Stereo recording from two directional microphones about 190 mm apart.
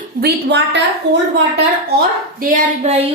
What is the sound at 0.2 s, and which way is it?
A woman's voice, 60° right (ahead or behind).